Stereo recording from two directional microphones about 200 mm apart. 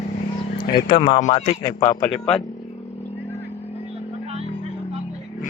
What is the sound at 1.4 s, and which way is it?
Speech, 20° left (ahead or behind).